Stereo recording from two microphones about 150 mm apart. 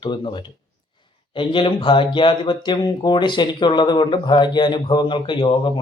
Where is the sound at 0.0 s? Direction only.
35° left (ahead or behind).